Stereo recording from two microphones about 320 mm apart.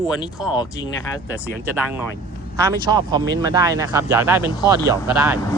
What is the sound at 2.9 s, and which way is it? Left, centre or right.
Speech, centre.